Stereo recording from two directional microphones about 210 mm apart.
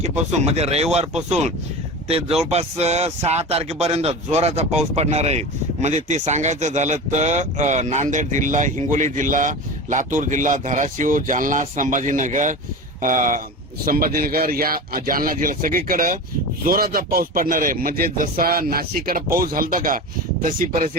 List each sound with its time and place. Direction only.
0.0 s speech: 30° right (ahead or behind)